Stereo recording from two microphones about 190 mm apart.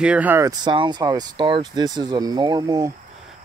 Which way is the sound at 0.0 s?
5° right (ahead or behind).